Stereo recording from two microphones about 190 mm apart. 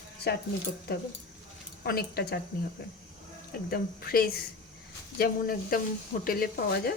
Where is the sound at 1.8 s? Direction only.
55° left (ahead or behind).